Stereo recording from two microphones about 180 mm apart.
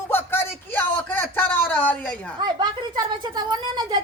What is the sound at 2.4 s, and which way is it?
A woman's voice, 25° right (ahead or behind).